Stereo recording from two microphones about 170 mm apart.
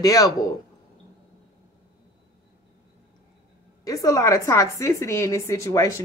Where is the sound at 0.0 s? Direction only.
20° left (ahead or behind).